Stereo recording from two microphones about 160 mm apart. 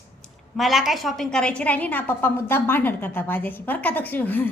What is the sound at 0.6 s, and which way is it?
A woman's voice, centre (ahead or behind).